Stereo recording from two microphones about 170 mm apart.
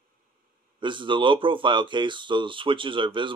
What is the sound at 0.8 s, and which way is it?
Speech, 30° right (ahead or behind).